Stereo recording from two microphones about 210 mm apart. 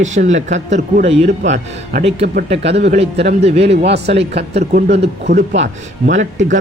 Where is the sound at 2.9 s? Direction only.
30° right (ahead or behind).